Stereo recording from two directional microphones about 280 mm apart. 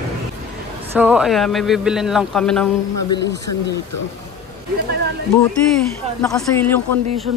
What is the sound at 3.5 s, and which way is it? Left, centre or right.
Speech, left.